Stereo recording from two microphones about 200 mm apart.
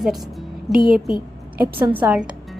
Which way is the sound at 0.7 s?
45° right (ahead or behind).